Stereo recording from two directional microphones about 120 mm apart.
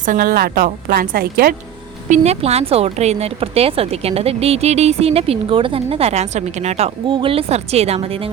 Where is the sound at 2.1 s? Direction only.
65° right (ahead or behind).